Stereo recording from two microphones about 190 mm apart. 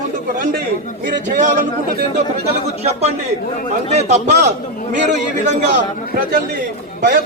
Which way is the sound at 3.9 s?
35° right (ahead or behind).